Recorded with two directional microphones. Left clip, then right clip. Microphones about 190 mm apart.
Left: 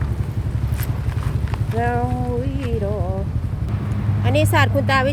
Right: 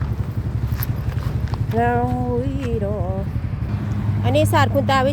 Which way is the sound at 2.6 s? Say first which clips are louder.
Even; 5° right (ahead or behind).